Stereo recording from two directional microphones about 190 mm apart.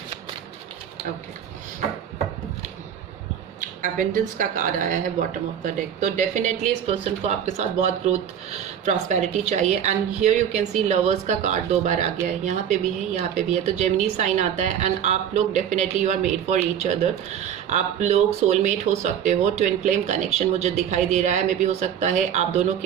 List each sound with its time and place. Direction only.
3.6 s a woman's voice: 45° right (ahead or behind)